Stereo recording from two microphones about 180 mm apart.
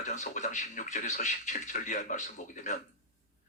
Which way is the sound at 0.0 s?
40° left (ahead or behind).